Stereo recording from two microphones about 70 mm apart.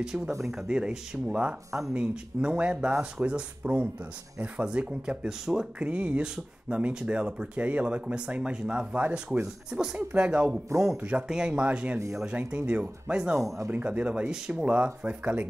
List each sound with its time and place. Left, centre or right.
0.0 s speech: centre